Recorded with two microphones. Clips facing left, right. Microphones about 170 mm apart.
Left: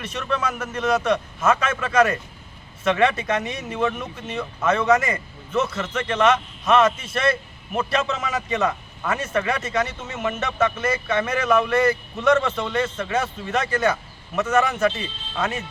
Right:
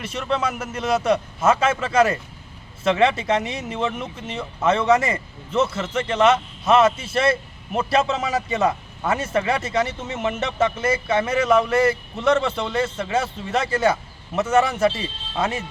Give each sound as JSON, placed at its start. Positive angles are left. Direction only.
{"t": 0.0, "sound": "speech", "side_deg": -25}